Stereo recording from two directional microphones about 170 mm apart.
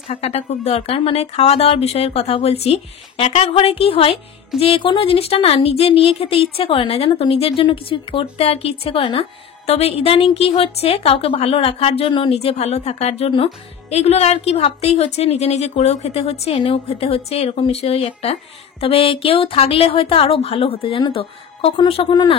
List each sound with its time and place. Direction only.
0.1 s a woman's voice: 35° left (ahead or behind)